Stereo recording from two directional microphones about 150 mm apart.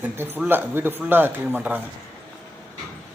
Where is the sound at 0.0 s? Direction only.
15° right (ahead or behind).